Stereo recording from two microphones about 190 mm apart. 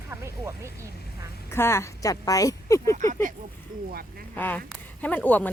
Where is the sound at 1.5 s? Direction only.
15° left (ahead or behind).